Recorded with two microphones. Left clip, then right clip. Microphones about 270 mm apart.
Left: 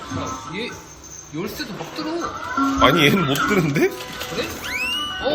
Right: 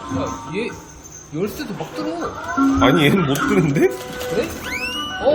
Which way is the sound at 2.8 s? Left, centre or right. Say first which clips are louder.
Left 2 dB; centre.